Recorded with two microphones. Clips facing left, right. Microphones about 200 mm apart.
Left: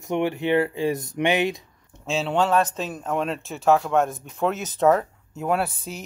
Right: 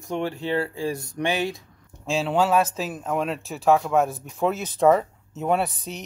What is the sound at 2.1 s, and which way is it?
Speech, centre (ahead or behind).